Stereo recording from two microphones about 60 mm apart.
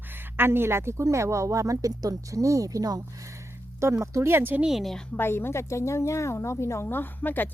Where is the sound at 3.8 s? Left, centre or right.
Right.